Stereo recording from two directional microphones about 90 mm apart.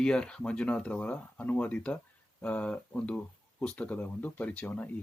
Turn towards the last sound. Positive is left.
turn(degrees=15)  # may be behind; listen again after turning